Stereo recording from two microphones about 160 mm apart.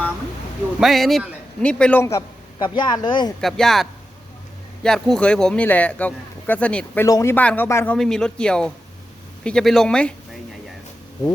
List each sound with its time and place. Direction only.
0.8 s a man's voice: centre (ahead or behind)
2.1 s a man's voice: 30° left (ahead or behind)
3.4 s a man's voice: centre (ahead or behind)
7.9 s a man's voice: 5° left (ahead or behind)